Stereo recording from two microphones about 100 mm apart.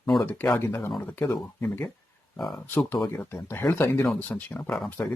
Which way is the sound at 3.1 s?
20° left (ahead or behind).